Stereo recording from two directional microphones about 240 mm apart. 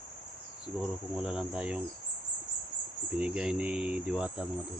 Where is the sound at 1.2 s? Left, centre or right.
Centre.